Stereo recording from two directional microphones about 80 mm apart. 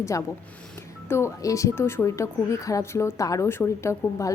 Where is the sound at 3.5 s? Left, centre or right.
Left.